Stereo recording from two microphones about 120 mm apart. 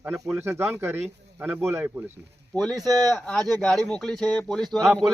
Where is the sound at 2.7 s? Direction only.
30° right (ahead or behind).